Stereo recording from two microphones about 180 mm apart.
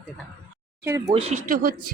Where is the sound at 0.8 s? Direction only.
15° right (ahead or behind).